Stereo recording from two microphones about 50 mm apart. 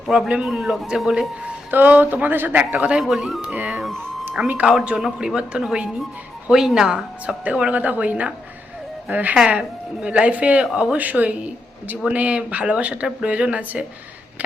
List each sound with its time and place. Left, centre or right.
0.1 s a woman's voice: centre
1.7 s a woman's voice: right
3.0 s a woman's voice: centre
3.5 s a woman's voice: right
4.9 s a woman's voice: centre
7.4 s a woman's voice: right